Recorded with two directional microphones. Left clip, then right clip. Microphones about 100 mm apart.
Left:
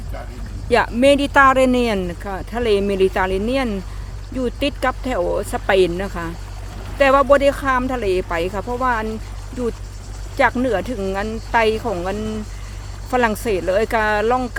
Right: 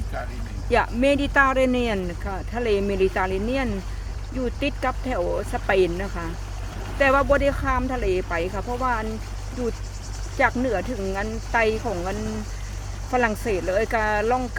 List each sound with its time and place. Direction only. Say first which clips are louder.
0.7 s speech: left 6 dB; 65° left (ahead or behind)
10.3 s speech: left 5 dB; 60° left (ahead or behind)